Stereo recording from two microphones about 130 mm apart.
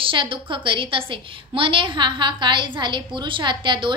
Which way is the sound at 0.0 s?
40° right (ahead or behind).